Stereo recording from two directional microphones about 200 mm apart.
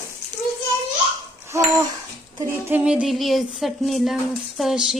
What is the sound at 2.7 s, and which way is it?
A woman's voice, 5° right (ahead or behind).